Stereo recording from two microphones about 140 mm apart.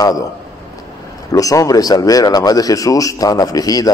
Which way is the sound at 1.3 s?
25° left (ahead or behind).